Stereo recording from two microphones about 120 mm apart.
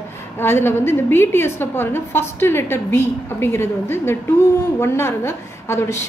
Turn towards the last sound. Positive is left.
turn(degrees=20)  # may be behind; listen again after turning